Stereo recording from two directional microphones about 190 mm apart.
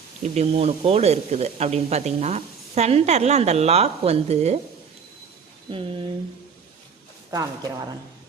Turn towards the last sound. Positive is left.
turn(degrees=-20)  # may be behind; listen again after turning